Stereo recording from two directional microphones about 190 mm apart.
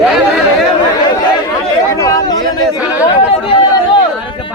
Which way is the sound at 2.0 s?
20° left (ahead or behind).